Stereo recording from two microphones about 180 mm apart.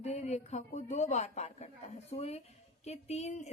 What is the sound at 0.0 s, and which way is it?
Speech, 40° left (ahead or behind).